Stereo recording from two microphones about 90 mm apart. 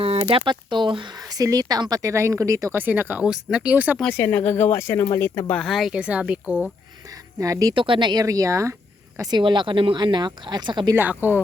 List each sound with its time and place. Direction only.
0.0 s speech: 90° right; by 1.0 s 65° right (ahead or behind)
1.3 s speech: 45° right (ahead or behind)
2.7 s speech: 20° right (ahead or behind)
3.2 s speech: 10° right (ahead or behind)
4.1 s speech: 25° left (ahead or behind)
5.5 s speech: centre (ahead or behind)
5.9 s speech: 10° right (ahead or behind)
7.3 s speech: 40° right (ahead or behind)
7.7 s speech: 70° right (ahead or behind)
8.2 s speech: 40° right (ahead or behind)
9.3 s speech: 60° right (ahead or behind)
10.9 s speech: 20° right (ahead or behind)